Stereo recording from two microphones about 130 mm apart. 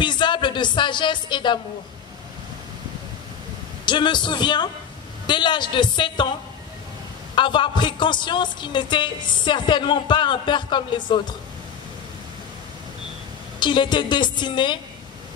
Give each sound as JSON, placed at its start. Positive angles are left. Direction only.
{"t": 0.0, "sound": "speech", "side_deg": 35}
{"t": 3.8, "sound": "a woman's voice", "side_deg": 35}
{"t": 7.3, "sound": "a woman's voice", "side_deg": 40}
{"t": 13.6, "sound": "a woman's voice", "side_deg": 35}